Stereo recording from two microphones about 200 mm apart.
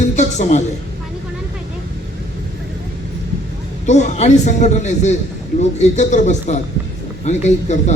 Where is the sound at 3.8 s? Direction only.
35° left (ahead or behind).